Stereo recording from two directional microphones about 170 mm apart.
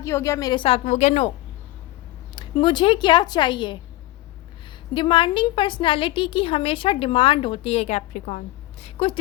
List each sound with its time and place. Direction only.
0.0 s a woman's voice: 15° left (ahead or behind); by 1.3 s 40° left (ahead or behind)
2.3 s a woman's voice: 25° left (ahead or behind)
4.9 s a woman's voice: 30° left (ahead or behind)